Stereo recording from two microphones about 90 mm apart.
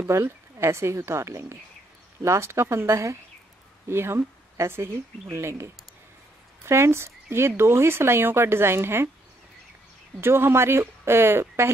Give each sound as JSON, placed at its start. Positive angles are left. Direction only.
{"t": 0.1, "sound": "a woman's voice", "side_deg": -30}
{"t": 10.2, "sound": "speech", "side_deg": -25}